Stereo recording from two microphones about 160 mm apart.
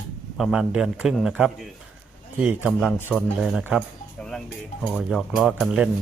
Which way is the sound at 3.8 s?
Centre (ahead or behind).